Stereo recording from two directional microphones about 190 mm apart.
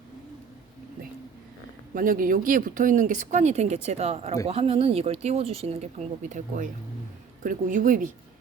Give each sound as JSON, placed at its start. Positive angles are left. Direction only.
{"t": 2.0, "sound": "a woman's voice", "side_deg": -45}